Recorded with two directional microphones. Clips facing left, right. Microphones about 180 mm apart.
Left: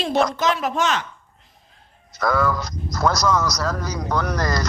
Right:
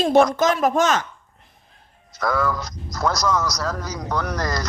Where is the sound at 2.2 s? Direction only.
75° left (ahead or behind).